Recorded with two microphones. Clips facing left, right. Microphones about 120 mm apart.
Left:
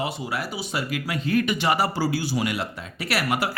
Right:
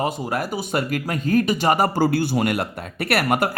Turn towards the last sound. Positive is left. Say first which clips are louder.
# right 5 dB
turn(degrees=-50)  # may be behind; listen again after turning